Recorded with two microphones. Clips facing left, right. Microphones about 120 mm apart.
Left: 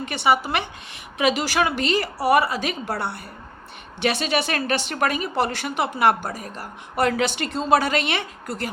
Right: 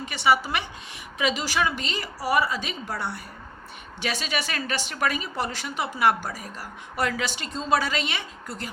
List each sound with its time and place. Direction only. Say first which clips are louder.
0.0 s a woman's voice: left 2 dB; 55° left (ahead or behind)